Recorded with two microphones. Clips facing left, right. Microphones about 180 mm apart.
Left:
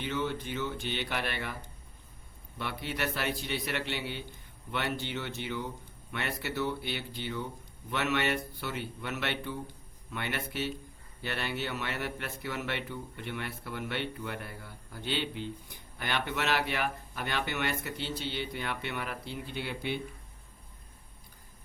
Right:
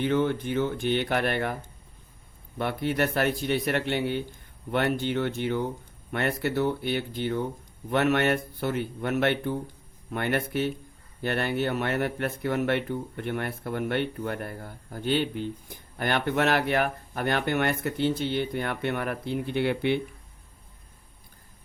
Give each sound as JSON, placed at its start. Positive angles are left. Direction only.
{"t": 0.0, "sound": "speech", "side_deg": -55}
{"t": 2.6, "sound": "speech", "side_deg": -50}